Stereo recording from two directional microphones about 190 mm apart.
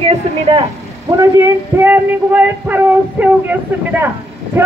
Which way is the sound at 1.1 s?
15° right (ahead or behind).